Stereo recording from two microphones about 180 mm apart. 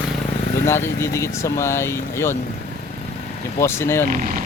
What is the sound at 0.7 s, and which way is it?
Speech, 15° left (ahead or behind).